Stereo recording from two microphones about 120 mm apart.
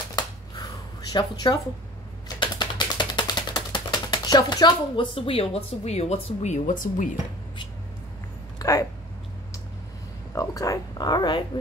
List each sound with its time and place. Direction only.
1.1 s speech: 35° left (ahead or behind)
2.2 s typing: 40° left (ahead or behind); by 7.1 s 85° left
8.5 s a sound: 30° left (ahead or behind)
10.3 s speech: 25° left (ahead or behind)